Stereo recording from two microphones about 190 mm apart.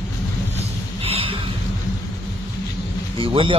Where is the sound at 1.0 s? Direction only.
30° right (ahead or behind).